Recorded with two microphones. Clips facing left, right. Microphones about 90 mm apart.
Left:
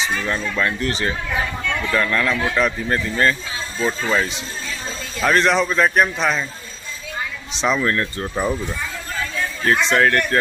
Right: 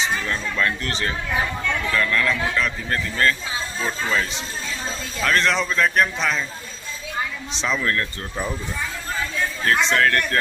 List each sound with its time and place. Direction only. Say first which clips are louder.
0.3 s a man's voice: left 2 dB; 15° left (ahead or behind)
1.9 s a man's voice: left 2 dB; 25° left (ahead or behind)
7.6 s speech: left 4 dB; 20° left (ahead or behind)
9.6 s a man's voice: left 3 dB; 15° left (ahead or behind)